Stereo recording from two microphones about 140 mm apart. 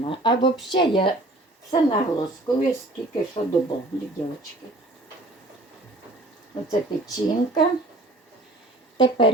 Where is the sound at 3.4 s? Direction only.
40° left (ahead or behind).